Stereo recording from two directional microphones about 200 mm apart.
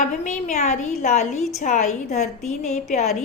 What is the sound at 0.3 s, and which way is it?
A woman's voice, 35° left (ahead or behind).